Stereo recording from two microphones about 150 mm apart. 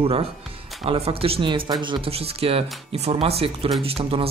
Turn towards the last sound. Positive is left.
turn(degrees=-40)  # may be behind; listen again after turning